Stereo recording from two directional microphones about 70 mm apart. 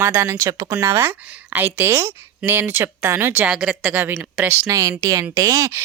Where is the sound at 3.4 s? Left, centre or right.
Centre.